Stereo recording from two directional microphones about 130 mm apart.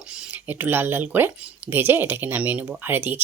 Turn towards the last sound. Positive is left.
turn(degrees=-15)  # may be behind; listen again after turning